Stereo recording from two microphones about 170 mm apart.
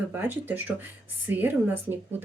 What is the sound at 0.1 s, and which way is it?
Speech, 10° right (ahead or behind).